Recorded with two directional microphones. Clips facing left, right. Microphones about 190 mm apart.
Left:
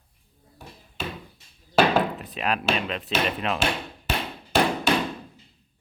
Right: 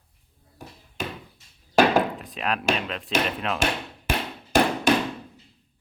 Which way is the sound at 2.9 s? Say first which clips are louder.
Even; centre (ahead or behind).